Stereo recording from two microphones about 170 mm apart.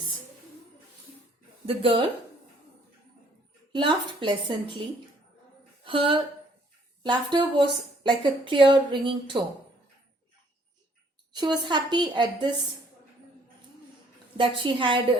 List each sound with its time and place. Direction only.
1.6 s speech: 30° right (ahead or behind)
3.7 s a woman's voice: 30° right (ahead or behind)
5.8 s a woman's voice: 30° right (ahead or behind)
11.3 s a woman's voice: 25° right (ahead or behind)
14.3 s a woman's voice: 30° right (ahead or behind)